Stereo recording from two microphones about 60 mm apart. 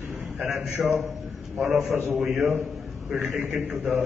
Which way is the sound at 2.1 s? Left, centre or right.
Centre.